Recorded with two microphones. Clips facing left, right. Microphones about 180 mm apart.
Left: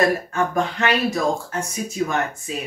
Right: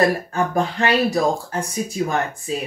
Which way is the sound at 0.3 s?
35° right (ahead or behind).